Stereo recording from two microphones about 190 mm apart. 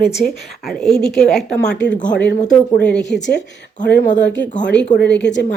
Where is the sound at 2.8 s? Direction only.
5° left (ahead or behind).